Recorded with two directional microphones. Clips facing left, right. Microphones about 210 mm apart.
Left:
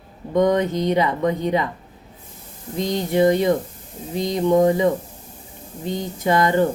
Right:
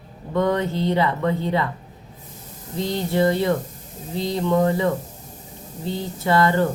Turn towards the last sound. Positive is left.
turn(degrees=15)  # may be behind; listen again after turning